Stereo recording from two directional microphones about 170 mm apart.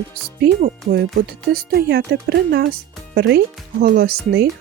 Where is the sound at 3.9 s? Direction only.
65° right (ahead or behind).